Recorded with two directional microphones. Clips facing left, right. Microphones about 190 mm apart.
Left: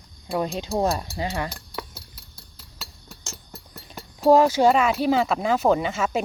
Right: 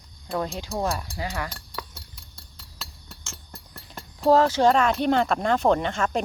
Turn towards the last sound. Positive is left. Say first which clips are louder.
# left 1 dB
turn(degrees=5)  # may be behind; listen again after turning